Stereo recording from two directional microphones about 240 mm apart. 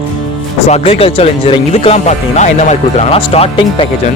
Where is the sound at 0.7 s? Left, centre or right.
Left.